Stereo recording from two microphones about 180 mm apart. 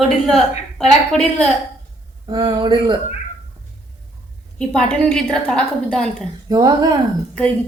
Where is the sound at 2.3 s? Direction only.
25° right (ahead or behind).